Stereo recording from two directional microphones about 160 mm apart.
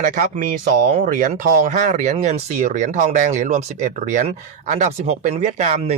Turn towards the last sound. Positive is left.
turn(degrees=-45)  # may be behind; listen again after turning